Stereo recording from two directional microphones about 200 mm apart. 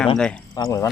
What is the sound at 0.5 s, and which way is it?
Speech, 15° left (ahead or behind).